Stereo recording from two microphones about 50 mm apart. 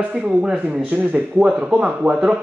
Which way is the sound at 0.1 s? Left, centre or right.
Centre.